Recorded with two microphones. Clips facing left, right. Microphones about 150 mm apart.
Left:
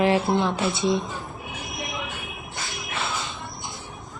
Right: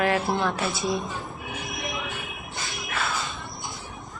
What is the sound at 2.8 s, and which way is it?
Tambourine, 25° left (ahead or behind).